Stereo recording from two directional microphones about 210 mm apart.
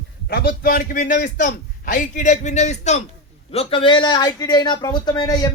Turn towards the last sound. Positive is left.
turn(degrees=20)  # may be behind; listen again after turning